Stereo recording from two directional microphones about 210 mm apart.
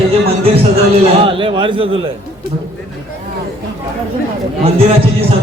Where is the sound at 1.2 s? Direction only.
25° right (ahead or behind).